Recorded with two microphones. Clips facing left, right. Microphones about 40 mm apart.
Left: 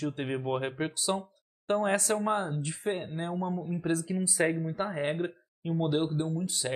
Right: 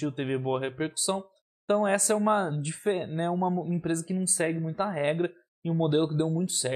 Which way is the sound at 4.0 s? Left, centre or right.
Centre.